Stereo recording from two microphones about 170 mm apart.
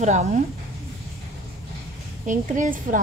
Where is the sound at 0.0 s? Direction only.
45° right (ahead or behind).